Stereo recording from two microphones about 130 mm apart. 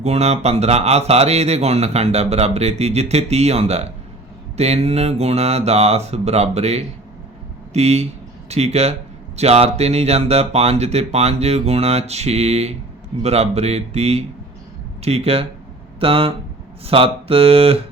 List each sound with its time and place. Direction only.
0.0 s speech: 55° right (ahead or behind)